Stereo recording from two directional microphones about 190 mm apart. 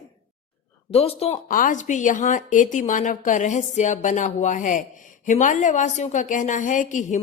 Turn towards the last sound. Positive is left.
turn(degrees=40)  # may be behind; listen again after turning